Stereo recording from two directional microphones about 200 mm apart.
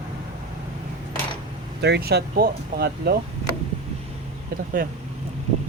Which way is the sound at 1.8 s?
55° right (ahead or behind).